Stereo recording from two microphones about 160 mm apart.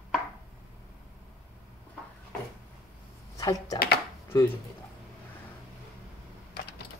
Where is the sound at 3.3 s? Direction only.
20° left (ahead or behind).